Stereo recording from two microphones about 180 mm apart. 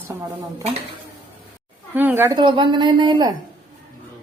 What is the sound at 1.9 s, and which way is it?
Speech, 10° right (ahead or behind).